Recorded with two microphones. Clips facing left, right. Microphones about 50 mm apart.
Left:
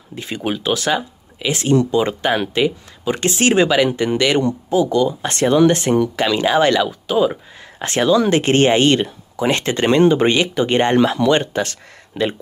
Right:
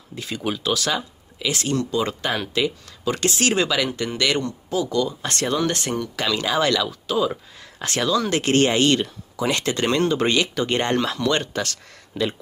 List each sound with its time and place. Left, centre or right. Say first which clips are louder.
0.1 s speech: left 4 dB; left